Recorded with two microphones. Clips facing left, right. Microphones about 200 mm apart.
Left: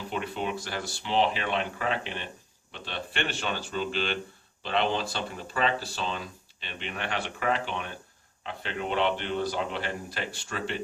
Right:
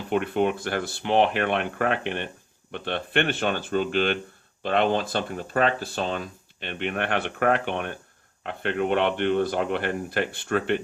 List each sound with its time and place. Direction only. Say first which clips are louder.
0.1 s speech: right 9 dB; 55° right (ahead or behind)